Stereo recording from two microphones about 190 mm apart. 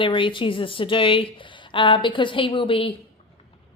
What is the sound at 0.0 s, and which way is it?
A woman's voice, 25° left (ahead or behind).